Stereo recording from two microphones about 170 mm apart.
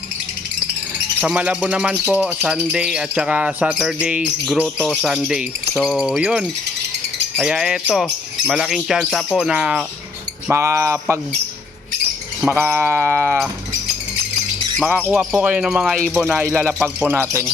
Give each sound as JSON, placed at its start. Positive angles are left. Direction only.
{"t": 1.2, "sound": "a man's voice", "side_deg": -10}
{"t": 2.1, "sound": "bird", "side_deg": -5}
{"t": 10.5, "sound": "a man's voice", "side_deg": -15}
{"t": 12.5, "sound": "a man's voice", "side_deg": -15}
{"t": 15.1, "sound": "bird", "side_deg": -5}
{"t": 16.1, "sound": "a man's voice", "side_deg": -10}